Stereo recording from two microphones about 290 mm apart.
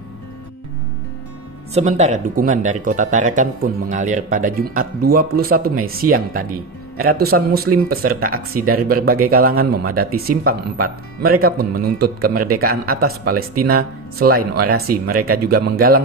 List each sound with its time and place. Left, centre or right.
1.7 s speech: right